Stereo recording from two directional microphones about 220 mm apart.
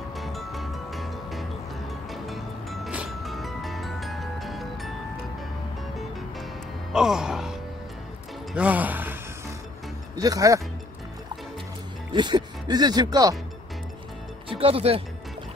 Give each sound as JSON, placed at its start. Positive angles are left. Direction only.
{"t": 0.2, "sound": "music", "side_deg": 0}
{"t": 6.9, "sound": "music", "side_deg": 0}
{"t": 8.5, "sound": "speech", "side_deg": -5}
{"t": 10.1, "sound": "speech", "side_deg": -15}
{"t": 12.1, "sound": "speech", "side_deg": -20}
{"t": 14.5, "sound": "speech", "side_deg": -25}